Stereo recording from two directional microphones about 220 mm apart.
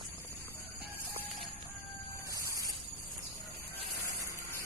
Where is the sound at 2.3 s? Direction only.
15° right (ahead or behind).